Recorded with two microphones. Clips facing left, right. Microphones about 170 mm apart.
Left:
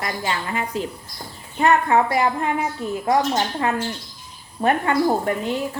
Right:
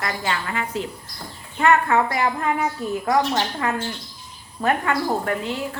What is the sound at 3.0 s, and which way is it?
Speech, 25° left (ahead or behind).